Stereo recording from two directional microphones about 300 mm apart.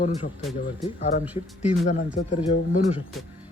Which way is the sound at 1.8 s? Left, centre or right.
Left.